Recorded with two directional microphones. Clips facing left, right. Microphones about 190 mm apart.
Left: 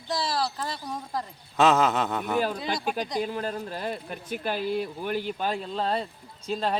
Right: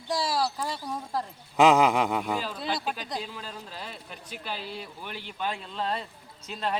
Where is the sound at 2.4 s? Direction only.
55° left (ahead or behind); by 6.6 s 35° left (ahead or behind).